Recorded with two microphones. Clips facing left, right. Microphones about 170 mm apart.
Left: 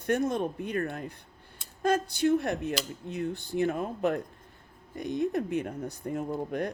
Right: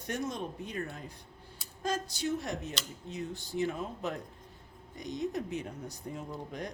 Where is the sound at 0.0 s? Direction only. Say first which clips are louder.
Left 8 dB; 55° left (ahead or behind).